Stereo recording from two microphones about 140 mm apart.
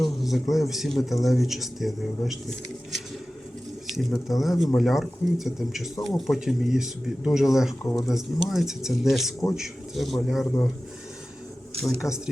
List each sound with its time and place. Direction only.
0.0 s speech: centre (ahead or behind)
3.8 s speech: centre (ahead or behind)
12.0 s speech: 25° left (ahead or behind)